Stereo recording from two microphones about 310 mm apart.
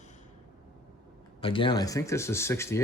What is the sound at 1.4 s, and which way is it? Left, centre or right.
Speech, centre.